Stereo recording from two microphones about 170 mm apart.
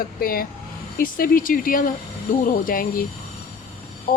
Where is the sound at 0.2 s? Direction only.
60° left (ahead or behind).